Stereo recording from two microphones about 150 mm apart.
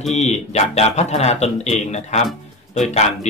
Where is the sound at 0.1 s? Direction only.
50° left (ahead or behind).